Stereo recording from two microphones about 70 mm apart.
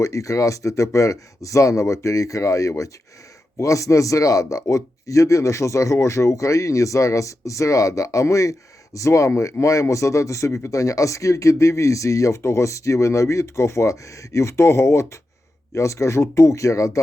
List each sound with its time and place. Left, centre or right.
0.0 s a man's voice: left